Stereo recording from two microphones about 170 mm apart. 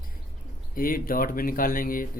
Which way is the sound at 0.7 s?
55° left (ahead or behind).